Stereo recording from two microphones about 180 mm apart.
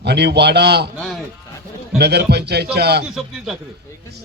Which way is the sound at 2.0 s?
65° right (ahead or behind).